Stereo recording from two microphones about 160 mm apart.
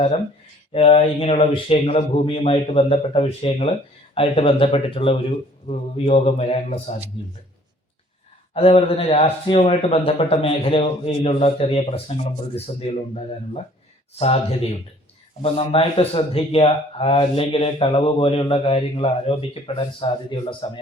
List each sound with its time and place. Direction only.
0.7 s a man's voice: 40° left (ahead or behind)
8.5 s a man's voice: 40° left (ahead or behind)